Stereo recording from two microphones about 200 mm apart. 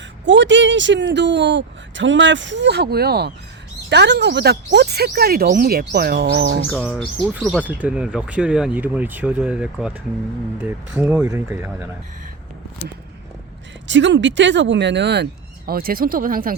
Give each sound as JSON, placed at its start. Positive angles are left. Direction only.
{"t": 0.3, "sound": "speech", "side_deg": -65}
{"t": 6.7, "sound": "speech", "side_deg": -5}
{"t": 13.8, "sound": "speech", "side_deg": -65}